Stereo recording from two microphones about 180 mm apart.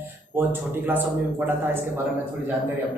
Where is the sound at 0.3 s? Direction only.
10° right (ahead or behind).